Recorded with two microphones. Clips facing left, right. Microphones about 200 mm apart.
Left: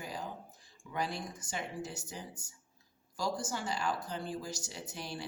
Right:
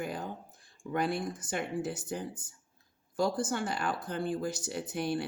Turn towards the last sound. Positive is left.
turn(degrees=-55)  # may be behind; listen again after turning